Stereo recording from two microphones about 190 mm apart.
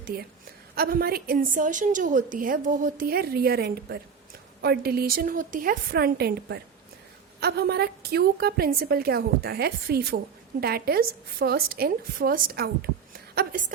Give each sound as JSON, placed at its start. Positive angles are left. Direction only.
{"t": 0.0, "sound": "a woman's voice", "side_deg": -55}